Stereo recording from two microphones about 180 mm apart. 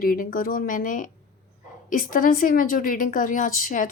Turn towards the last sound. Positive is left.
turn(degrees=50)  # may be behind; listen again after turning